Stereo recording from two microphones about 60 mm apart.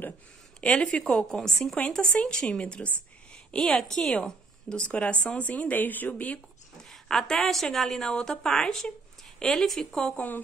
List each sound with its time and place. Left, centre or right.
0.6 s speech: centre
3.5 s a woman's voice: centre; by 6.4 s left
6.8 s speech: centre
10.1 s a woman's voice: left